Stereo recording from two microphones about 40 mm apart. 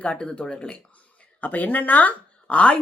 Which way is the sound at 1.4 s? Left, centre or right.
Left.